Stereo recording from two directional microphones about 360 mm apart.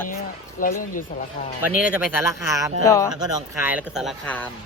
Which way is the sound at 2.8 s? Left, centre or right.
Centre.